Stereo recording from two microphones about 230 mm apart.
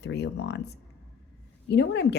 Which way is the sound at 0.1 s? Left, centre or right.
Left.